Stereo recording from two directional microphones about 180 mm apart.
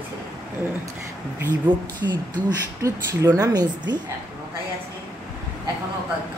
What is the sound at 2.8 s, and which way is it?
Speech, 15° right (ahead or behind).